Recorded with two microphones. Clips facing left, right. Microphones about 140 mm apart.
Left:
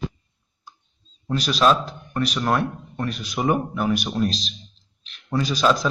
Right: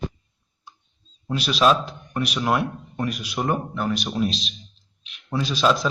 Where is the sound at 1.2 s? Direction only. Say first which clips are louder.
Even; 5° right (ahead or behind).